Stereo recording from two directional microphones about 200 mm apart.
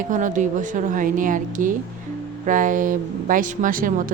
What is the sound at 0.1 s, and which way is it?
Speech, 40° right (ahead or behind).